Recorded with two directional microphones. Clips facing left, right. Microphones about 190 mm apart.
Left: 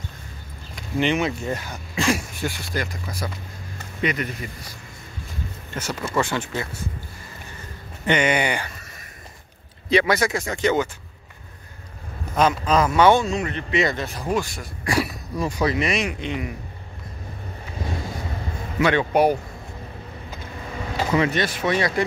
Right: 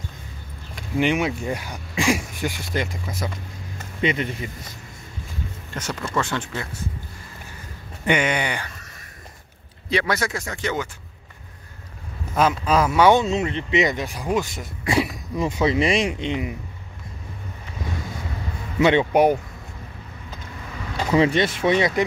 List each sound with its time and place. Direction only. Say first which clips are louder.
0.9 s speech: right 1 dB; 10° right (ahead or behind); by 4.5 s 25° right (ahead or behind)
5.8 s speech: left 2 dB; 5° left (ahead or behind)
8.3 s speech: left 3 dB; 10° left (ahead or behind)
9.8 s speech: left 4 dB; 15° left (ahead or behind)
12.4 s speech: even; 5° right (ahead or behind)
13.2 s speech: right 2 dB; 25° right (ahead or behind)
18.8 s speech: right 2 dB; 25° right (ahead or behind)
21.2 s speech: right 7 dB; 25° right (ahead or behind)